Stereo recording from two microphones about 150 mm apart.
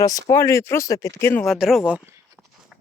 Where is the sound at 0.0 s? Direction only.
25° left (ahead or behind).